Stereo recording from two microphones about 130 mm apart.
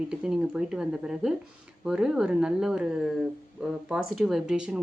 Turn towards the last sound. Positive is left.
turn(degrees=-5)  # may be behind; listen again after turning